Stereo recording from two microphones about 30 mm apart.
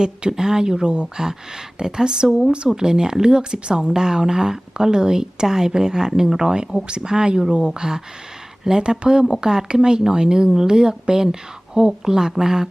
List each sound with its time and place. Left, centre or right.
0.0 s speech: right